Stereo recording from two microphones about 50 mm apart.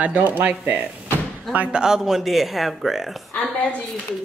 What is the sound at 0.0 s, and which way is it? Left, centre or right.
Speech, right.